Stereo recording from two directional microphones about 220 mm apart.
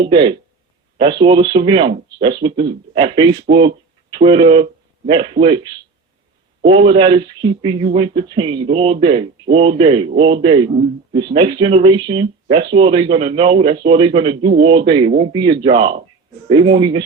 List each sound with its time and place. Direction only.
0.0 s speech: 20° right (ahead or behind)